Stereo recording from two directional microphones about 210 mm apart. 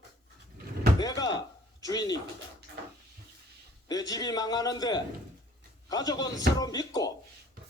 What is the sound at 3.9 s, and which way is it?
A man's voice, 15° left (ahead or behind).